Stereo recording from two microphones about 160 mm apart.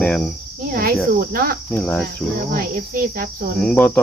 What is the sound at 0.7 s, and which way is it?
Cricket, 65° right (ahead or behind).